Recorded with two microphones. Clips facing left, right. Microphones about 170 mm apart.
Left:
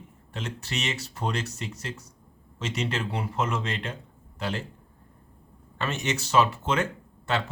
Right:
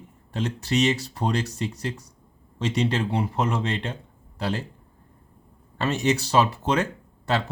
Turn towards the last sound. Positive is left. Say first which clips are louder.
# right 3 dB
turn(degrees=-35)  # may be behind; listen again after turning